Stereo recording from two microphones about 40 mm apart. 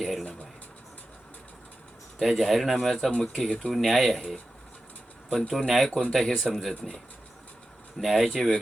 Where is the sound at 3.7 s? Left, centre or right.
Centre.